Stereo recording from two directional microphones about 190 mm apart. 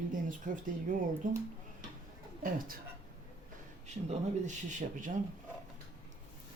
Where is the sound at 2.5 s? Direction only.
50° right (ahead or behind).